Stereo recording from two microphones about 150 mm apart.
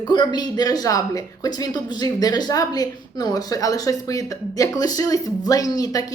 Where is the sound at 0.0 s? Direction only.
30° left (ahead or behind).